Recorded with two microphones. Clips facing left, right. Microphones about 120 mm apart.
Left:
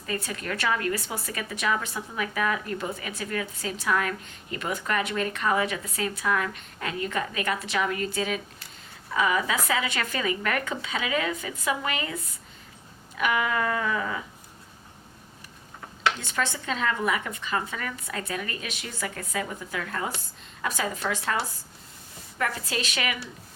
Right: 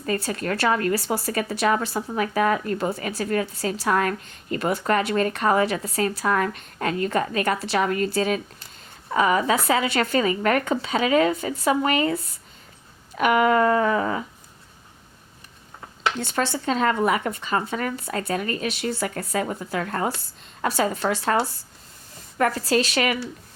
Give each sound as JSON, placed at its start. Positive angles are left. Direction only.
{"t": 0.0, "sound": "a woman's voice", "side_deg": -40}
{"t": 16.3, "sound": "a woman's voice", "side_deg": -35}
{"t": 22.4, "sound": "a woman's voice", "side_deg": -40}